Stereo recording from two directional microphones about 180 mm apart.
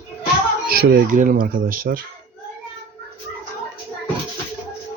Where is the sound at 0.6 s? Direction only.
55° right (ahead or behind).